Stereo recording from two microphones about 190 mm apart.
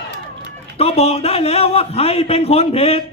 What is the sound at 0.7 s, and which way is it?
A man's voice, 30° left (ahead or behind).